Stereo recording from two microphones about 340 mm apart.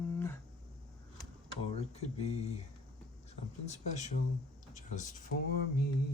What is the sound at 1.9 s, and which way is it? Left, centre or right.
Speech, centre.